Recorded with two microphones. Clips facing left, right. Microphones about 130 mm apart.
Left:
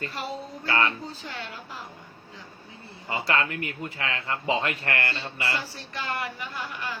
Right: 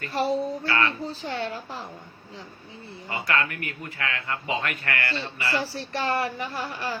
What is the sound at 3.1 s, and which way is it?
Speech, 25° left (ahead or behind).